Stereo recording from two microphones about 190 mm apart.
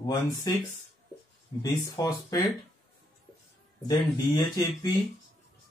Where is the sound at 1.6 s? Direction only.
15° left (ahead or behind).